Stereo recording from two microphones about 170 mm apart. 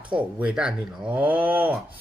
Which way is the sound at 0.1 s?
5° right (ahead or behind).